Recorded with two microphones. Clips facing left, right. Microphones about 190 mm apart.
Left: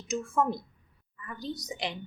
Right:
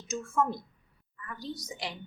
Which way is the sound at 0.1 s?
15° left (ahead or behind).